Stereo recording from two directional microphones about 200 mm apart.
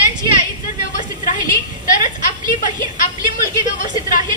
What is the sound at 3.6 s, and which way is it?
Speech, 40° left (ahead or behind).